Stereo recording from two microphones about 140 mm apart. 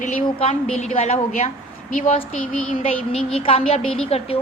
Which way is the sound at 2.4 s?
10° left (ahead or behind).